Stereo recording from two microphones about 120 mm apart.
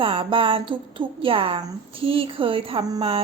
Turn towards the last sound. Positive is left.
turn(degrees=-55)  # may be behind; listen again after turning